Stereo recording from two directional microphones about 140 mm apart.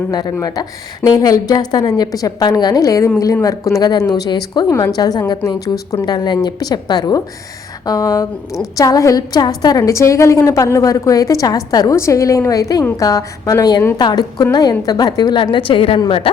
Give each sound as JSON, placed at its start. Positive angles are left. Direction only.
{"t": 0.1, "sound": "a woman's voice", "side_deg": 30}